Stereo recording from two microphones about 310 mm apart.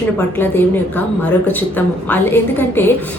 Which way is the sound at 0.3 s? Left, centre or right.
Centre.